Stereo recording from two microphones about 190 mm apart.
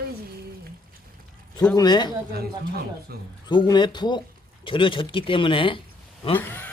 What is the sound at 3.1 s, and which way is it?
Speech, 55° right (ahead or behind).